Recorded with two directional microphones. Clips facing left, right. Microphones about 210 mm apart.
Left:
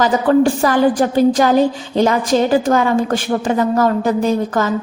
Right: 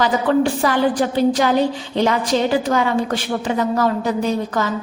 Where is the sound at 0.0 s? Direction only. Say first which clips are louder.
Left 4 dB; 45° left (ahead or behind).